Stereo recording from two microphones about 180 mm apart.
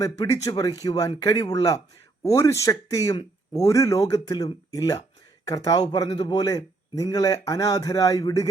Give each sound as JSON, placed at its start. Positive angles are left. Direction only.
{"t": 0.0, "sound": "a man's voice", "side_deg": 20}